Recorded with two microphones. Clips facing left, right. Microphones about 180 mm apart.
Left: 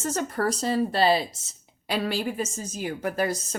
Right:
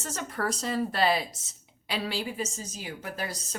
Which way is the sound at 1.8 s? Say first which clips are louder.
Left 5 dB; 50° left (ahead or behind).